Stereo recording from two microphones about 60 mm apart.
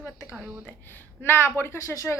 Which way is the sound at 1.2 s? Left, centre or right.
Left.